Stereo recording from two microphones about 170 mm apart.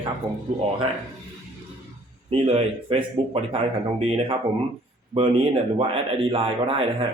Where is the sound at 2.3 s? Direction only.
35° right (ahead or behind).